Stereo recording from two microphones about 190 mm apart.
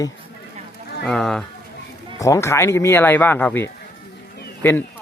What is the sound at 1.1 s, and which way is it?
Speech, centre (ahead or behind).